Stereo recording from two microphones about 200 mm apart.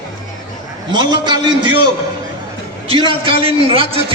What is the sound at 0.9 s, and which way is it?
Speech, 20° right (ahead or behind).